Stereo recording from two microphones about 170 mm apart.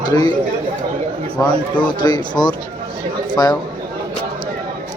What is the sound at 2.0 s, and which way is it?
Speech, 25° left (ahead or behind).